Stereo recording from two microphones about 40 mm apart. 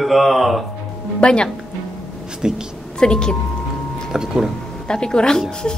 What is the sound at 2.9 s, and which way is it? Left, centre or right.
Speech, centre.